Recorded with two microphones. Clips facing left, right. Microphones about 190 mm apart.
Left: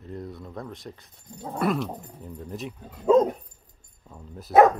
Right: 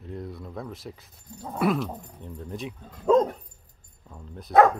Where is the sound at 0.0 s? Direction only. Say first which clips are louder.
Even; centre (ahead or behind).